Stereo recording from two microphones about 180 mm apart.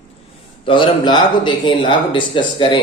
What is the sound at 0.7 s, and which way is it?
Speech, 25° left (ahead or behind).